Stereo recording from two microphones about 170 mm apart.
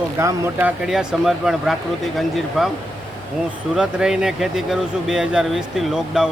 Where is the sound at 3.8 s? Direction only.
5° right (ahead or behind).